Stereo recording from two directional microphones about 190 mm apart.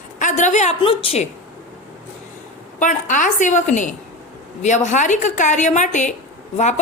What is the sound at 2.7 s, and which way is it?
A woman's voice, 40° left (ahead or behind).